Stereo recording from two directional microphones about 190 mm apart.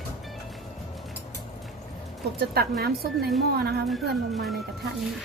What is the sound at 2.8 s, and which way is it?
A woman's voice, 55° right (ahead or behind).